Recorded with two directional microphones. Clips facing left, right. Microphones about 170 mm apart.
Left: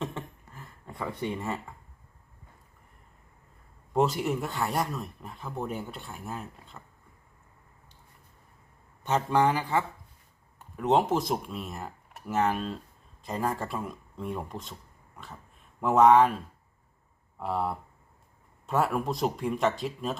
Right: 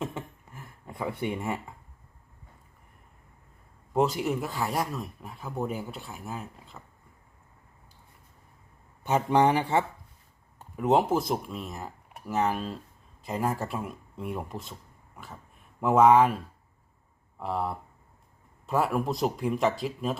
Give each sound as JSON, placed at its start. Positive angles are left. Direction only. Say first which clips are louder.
{"t": 0.0, "sound": "a sound", "louder": "right 1 dB", "side_deg": -10}
{"t": 3.9, "sound": "speech", "louder": "even", "side_deg": 0}
{"t": 9.0, "sound": "speech", "louder": "right 2 dB", "side_deg": -15}
{"t": 10.8, "sound": "speech", "louder": "right 1 dB", "side_deg": -5}
{"t": 17.4, "sound": "speech", "louder": "left 1 dB", "side_deg": 0}